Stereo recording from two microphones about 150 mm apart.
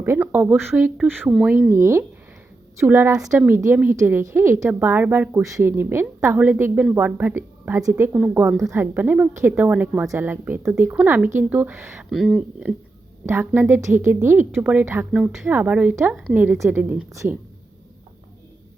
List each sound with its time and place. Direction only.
0.0 s a woman's voice: 15° right (ahead or behind)
12.1 s speech: centre (ahead or behind)
13.2 s a woman's voice: 15° right (ahead or behind)